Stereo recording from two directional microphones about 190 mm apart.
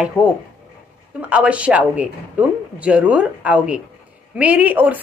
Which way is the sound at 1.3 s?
5° right (ahead or behind).